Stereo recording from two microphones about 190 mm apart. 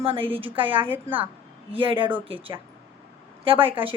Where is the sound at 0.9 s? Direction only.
10° right (ahead or behind).